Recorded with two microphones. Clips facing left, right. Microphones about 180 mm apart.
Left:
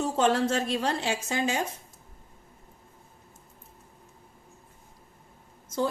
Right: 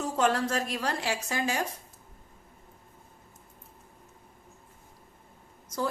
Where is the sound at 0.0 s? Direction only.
25° left (ahead or behind).